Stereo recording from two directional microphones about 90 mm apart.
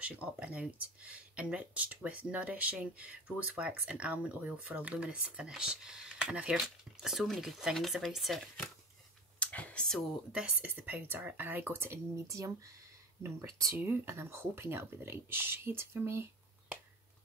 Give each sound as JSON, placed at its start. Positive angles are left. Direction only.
{"t": 0.0, "sound": "speech", "side_deg": -15}
{"t": 9.4, "sound": "computer keyboard", "side_deg": 15}
{"t": 10.3, "sound": "speech", "side_deg": -15}
{"t": 12.3, "sound": "speech", "side_deg": -35}
{"t": 13.7, "sound": "speech", "side_deg": -25}